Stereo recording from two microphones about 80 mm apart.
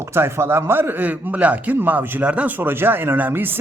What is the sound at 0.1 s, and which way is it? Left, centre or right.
A man's voice, right.